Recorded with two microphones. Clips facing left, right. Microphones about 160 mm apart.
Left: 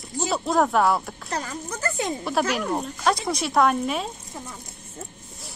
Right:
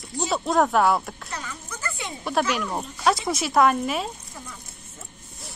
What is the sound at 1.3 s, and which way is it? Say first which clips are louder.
Speech: left 6 dB; 40° left (ahead or behind).